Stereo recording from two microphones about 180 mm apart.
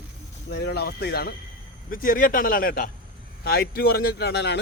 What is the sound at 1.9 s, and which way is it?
A man's voice, 50° left (ahead or behind).